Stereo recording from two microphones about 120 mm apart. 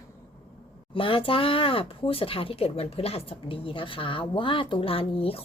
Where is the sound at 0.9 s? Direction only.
50° left (ahead or behind).